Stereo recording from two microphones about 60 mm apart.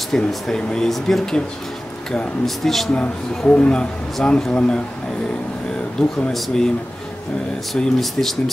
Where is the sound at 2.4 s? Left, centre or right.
Centre.